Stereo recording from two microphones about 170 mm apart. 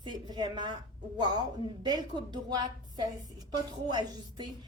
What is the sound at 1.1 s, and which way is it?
A woman's voice, 25° right (ahead or behind).